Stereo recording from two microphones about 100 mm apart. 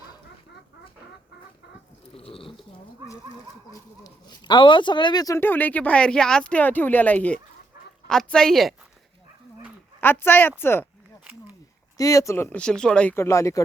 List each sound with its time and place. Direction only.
2.1 s a sound: 70° left (ahead or behind)
3.7 s speech: 45° left (ahead or behind)
5.4 s a woman's voice: 20° left (ahead or behind); by 8.7 s 5° left (ahead or behind)
10.0 s speech: 20° left (ahead or behind)
11.9 s speech: 35° left (ahead or behind)
12.5 s speech: 10° left (ahead or behind)
13.1 s speech: 30° left (ahead or behind)